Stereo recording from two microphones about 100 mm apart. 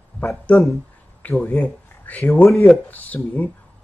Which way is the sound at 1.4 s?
20° left (ahead or behind).